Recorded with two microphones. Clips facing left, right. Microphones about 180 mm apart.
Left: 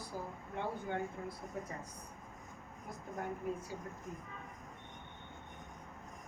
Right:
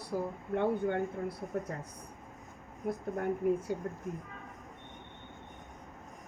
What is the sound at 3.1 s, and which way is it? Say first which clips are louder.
Speech: right 8 dB; 60° right (ahead or behind).